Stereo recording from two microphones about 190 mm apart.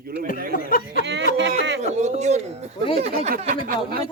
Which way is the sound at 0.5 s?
50° left (ahead or behind).